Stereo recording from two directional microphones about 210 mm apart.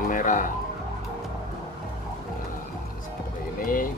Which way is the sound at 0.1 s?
40° left (ahead or behind).